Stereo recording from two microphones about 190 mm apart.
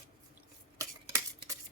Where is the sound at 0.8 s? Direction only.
15° right (ahead or behind).